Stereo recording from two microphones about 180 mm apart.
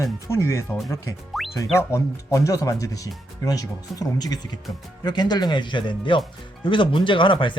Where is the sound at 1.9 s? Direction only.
15° left (ahead or behind).